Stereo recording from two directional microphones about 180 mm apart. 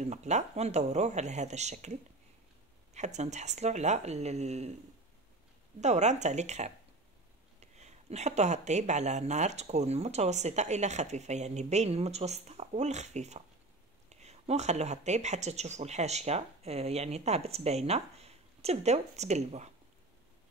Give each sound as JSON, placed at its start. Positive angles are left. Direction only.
{"t": 0.0, "sound": "speech", "side_deg": -40}
{"t": 5.8, "sound": "speech", "side_deg": -40}